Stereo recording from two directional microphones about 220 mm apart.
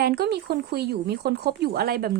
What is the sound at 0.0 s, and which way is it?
Speech, 45° right (ahead or behind).